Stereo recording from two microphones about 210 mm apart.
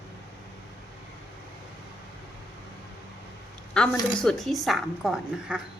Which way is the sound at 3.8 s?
5° left (ahead or behind).